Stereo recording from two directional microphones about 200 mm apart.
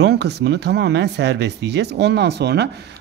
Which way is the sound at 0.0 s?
55° right (ahead or behind).